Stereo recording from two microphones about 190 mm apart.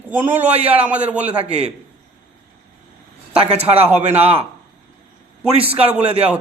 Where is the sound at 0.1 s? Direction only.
10° right (ahead or behind).